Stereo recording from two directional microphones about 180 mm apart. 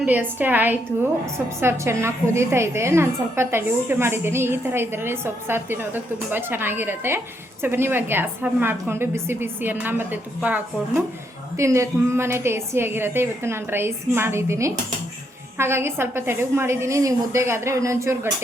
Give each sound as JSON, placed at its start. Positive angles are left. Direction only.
{"t": 0.0, "sound": "a woman's voice", "side_deg": -10}